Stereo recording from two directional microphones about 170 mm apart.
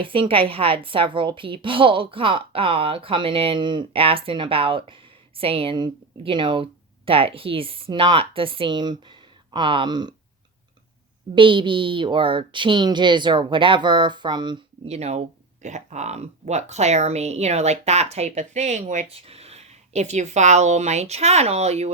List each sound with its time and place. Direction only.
0.0 s speech: 30° right (ahead or behind)
11.3 s speech: 30° right (ahead or behind)
14.8 s speech: 40° right (ahead or behind)